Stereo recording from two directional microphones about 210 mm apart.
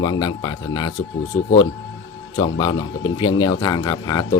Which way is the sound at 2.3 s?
20° left (ahead or behind).